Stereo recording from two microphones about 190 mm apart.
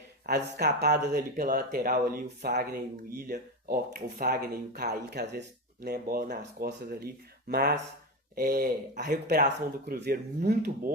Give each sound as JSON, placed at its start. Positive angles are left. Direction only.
{"t": 0.3, "sound": "speech", "side_deg": -60}